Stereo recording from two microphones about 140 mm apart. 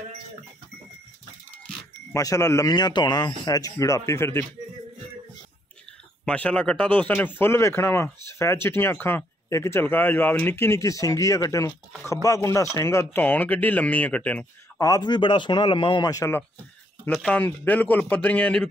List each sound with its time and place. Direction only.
2.1 s speech: 25° left (ahead or behind)
6.2 s speech: 10° left (ahead or behind)
14.8 s speech: 30° left (ahead or behind)
17.0 s speech: 5° left (ahead or behind)